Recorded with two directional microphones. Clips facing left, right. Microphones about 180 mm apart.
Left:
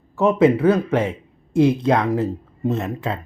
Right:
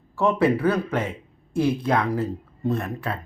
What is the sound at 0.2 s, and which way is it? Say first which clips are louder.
Speech: left 5 dB; 20° left (ahead or behind).